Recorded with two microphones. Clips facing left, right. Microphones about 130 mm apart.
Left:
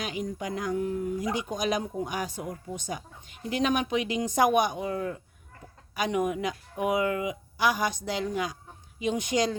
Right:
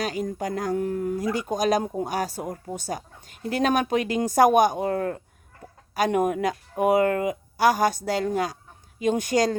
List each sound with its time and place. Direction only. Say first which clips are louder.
0.0 s speech: right 5 dB; 40° right (ahead or behind)